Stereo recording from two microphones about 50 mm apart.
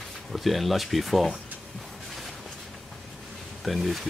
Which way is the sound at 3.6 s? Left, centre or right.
Centre.